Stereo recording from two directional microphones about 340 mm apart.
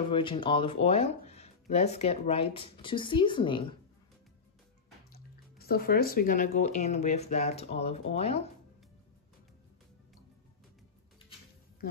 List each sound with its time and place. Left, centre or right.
0.1 s speech: centre
5.1 s speech: left